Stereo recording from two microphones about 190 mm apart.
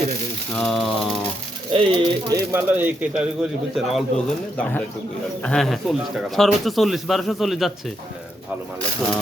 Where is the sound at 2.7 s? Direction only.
10° right (ahead or behind).